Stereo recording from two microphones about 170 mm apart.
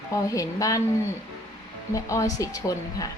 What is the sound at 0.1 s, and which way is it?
Speech, 20° left (ahead or behind).